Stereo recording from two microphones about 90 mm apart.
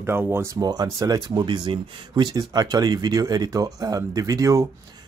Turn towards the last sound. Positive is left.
turn(degrees=-40)  # may be behind; listen again after turning